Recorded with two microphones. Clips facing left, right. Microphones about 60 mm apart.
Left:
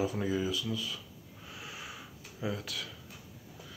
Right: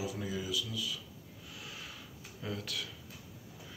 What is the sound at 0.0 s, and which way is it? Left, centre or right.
Speech, left.